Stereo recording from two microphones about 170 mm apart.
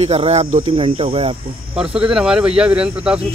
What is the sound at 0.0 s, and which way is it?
Speech, 35° right (ahead or behind).